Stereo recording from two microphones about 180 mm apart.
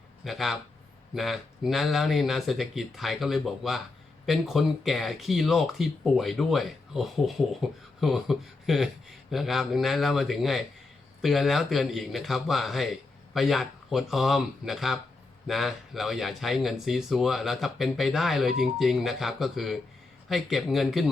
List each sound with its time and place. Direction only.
0.3 s speech: centre (ahead or behind)